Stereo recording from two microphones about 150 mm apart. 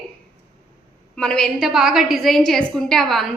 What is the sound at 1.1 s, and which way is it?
A woman's voice, 5° left (ahead or behind).